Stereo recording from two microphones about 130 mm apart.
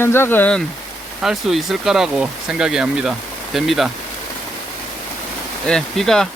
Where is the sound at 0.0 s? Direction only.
20° left (ahead or behind).